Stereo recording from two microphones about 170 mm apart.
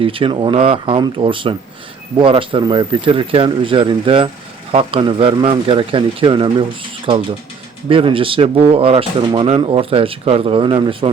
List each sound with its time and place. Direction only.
0.0 s speech: 30° right (ahead or behind)
7.9 s speech: 30° right (ahead or behind)